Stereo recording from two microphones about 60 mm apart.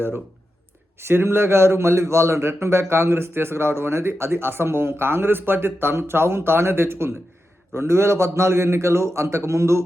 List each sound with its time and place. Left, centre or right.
0.9 s a man's voice: right